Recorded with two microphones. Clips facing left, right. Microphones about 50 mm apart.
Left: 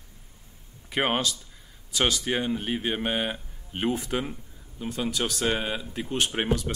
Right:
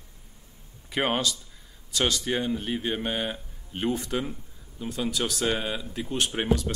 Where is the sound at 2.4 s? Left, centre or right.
Centre.